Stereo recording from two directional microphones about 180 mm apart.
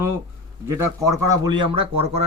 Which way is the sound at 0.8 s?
15° right (ahead or behind).